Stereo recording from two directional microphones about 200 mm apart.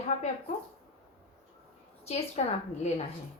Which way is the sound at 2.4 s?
30° left (ahead or behind).